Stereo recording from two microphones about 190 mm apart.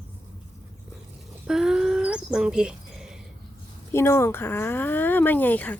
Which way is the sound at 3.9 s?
15° left (ahead or behind).